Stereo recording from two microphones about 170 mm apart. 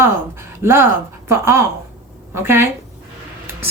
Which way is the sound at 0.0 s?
15° right (ahead or behind).